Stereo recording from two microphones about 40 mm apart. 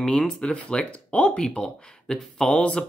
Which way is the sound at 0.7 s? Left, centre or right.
Left.